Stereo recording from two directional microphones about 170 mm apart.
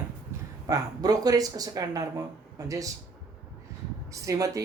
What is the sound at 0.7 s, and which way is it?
Speech, 20° right (ahead or behind).